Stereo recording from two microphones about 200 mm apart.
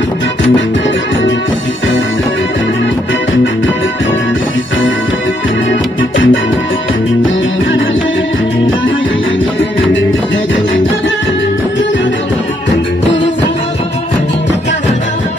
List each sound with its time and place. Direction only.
5.7 s music: 70° left (ahead or behind)